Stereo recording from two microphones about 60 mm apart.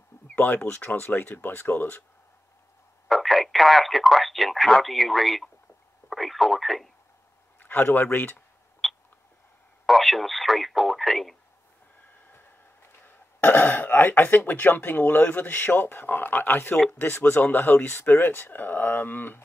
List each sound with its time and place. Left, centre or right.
0.4 s speech: left
3.1 s speech: centre
6.0 s radio: centre
7.6 s speech: left
8.8 s a sound: centre
9.8 s speech: centre
12.8 s speech: left